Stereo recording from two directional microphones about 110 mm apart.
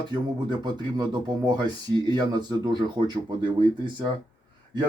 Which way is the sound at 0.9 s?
40° right (ahead or behind).